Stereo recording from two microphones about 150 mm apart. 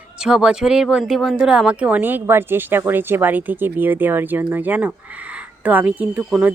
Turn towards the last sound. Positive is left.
turn(degrees=-10)  # may be behind; listen again after turning